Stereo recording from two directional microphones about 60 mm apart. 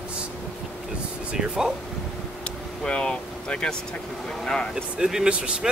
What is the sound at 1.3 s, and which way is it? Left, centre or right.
Speech, centre.